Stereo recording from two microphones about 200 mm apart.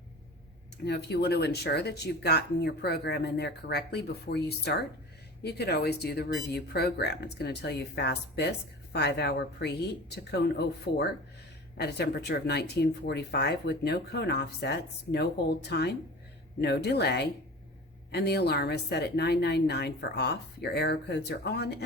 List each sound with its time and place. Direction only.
0.9 s speech: 55° left (ahead or behind)
10.9 s speech: 50° left (ahead or behind)